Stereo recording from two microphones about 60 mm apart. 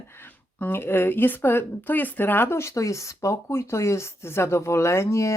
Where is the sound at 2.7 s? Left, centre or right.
Left.